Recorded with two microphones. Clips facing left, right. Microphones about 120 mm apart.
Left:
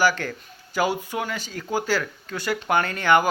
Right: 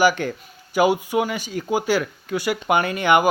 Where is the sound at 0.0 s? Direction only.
15° right (ahead or behind).